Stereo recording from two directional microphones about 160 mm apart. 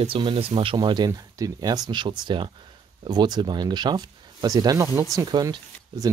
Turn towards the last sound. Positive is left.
turn(degrees=-25)  # may be behind; listen again after turning